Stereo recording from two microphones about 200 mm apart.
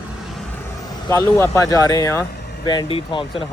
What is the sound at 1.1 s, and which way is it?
Speech, 15° left (ahead or behind).